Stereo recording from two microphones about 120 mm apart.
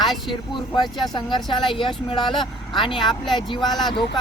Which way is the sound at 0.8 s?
40° left (ahead or behind).